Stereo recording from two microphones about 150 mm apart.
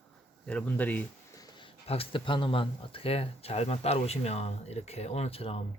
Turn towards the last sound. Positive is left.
turn(degrees=40)  # may be behind; listen again after turning